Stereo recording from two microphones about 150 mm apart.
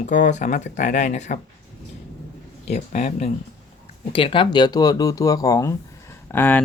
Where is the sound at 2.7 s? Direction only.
50° left (ahead or behind).